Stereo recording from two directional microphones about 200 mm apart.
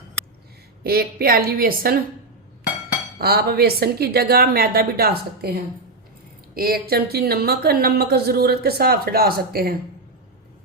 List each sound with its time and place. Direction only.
0.9 s speech: 50° right (ahead or behind)
3.2 s speech: 50° right (ahead or behind)